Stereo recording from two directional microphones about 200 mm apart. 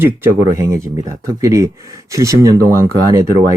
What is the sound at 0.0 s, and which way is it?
Speech, 10° right (ahead or behind).